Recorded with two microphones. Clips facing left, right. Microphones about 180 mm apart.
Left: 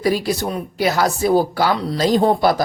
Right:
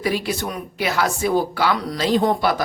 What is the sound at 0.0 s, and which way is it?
Speech, 40° left (ahead or behind).